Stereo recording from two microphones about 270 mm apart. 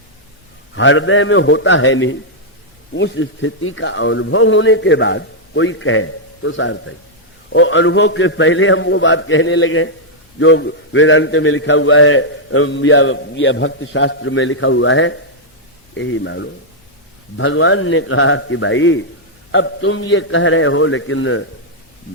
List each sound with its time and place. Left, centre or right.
0.8 s a man's voice: left